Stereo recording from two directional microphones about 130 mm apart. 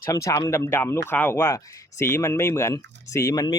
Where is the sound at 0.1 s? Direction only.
25° left (ahead or behind).